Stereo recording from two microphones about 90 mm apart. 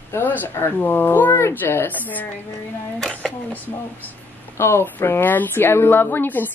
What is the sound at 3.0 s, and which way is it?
Speech, 5° left (ahead or behind).